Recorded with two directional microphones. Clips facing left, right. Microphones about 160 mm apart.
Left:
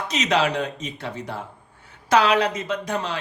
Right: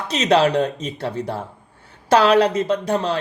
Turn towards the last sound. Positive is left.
turn(degrees=-30)  # may be behind; listen again after turning